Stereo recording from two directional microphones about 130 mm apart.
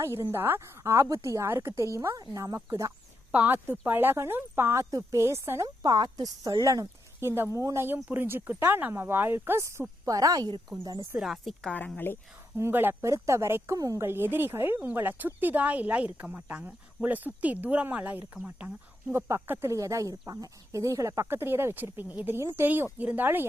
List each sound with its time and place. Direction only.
0.0 s speech: 20° right (ahead or behind)
11.2 s a woman's voice: centre (ahead or behind)
11.9 s speech: 15° left (ahead or behind)
12.5 s speech: 20° right (ahead or behind)
19.1 s speech: 20° right (ahead or behind)